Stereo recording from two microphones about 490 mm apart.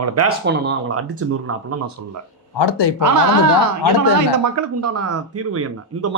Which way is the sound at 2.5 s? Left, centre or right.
Left.